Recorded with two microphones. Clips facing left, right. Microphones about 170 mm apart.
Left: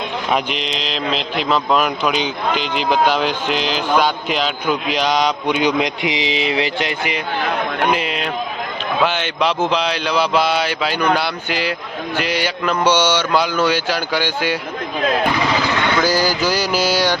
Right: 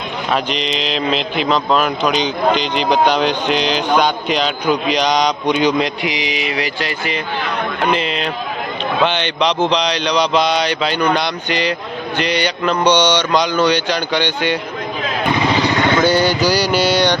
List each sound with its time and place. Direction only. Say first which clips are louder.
0.3 s speech: right 1 dB; 15° left (ahead or behind)
0.6 s speech: right 4 dB; centre (ahead or behind)
16.0 s speech: right 3 dB; centre (ahead or behind)